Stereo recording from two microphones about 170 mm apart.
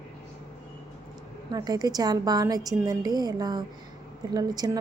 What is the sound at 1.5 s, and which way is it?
A woman's voice, 20° right (ahead or behind).